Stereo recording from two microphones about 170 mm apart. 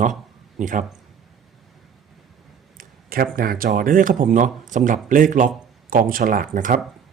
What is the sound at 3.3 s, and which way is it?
Speech, 60° right (ahead or behind).